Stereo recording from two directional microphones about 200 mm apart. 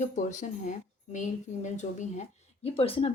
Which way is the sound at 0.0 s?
35° left (ahead or behind).